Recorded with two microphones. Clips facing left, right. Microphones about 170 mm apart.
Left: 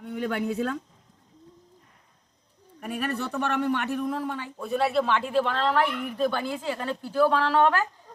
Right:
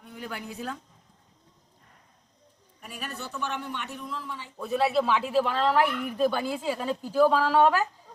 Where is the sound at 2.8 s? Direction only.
60° left (ahead or behind).